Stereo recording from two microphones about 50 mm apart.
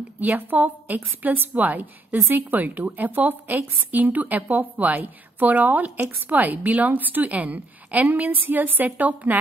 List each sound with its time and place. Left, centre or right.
0.2 s a woman's voice: right